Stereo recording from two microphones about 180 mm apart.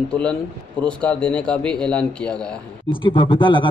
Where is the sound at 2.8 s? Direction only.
25° left (ahead or behind).